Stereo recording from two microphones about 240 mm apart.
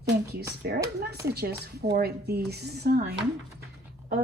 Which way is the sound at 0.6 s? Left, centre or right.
Right.